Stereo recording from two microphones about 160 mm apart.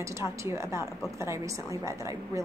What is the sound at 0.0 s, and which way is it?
A woman's voice, 20° right (ahead or behind).